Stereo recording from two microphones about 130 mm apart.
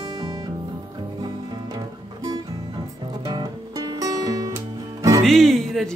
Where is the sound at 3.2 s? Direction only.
30° right (ahead or behind).